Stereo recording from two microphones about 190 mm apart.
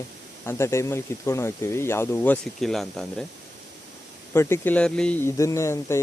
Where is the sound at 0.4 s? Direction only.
15° left (ahead or behind).